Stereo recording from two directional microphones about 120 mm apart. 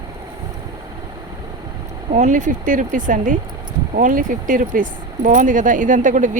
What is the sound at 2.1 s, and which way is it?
Speech, 90° right.